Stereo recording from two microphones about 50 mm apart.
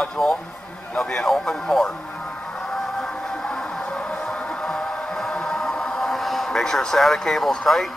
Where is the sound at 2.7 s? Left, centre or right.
Centre.